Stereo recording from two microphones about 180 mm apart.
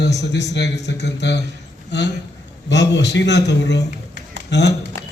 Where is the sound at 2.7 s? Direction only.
75° left (ahead or behind).